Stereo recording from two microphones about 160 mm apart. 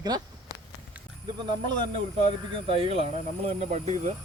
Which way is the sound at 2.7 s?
35° right (ahead or behind).